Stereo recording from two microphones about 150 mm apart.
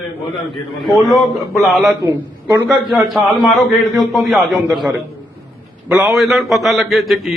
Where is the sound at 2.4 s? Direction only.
20° right (ahead or behind).